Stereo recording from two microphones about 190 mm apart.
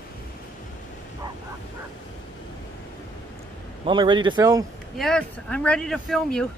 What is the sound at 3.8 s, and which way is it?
Speech, 25° right (ahead or behind).